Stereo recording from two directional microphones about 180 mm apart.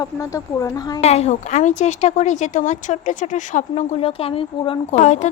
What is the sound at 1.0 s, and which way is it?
A woman's voice, 35° left (ahead or behind).